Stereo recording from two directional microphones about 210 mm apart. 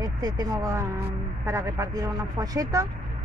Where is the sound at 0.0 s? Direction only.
20° right (ahead or behind).